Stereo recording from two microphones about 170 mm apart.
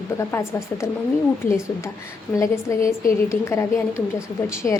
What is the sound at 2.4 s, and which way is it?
Speech, 15° left (ahead or behind).